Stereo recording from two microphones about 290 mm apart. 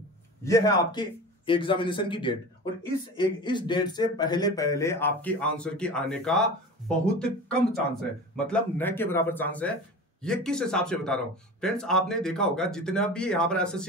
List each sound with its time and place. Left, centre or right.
0.4 s speech: centre